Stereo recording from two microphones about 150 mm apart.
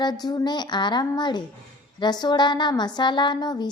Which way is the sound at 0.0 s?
25° left (ahead or behind).